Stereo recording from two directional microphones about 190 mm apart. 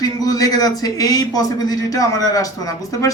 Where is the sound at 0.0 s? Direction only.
20° left (ahead or behind).